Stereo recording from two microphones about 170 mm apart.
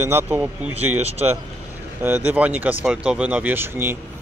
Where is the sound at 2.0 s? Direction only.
10° right (ahead or behind).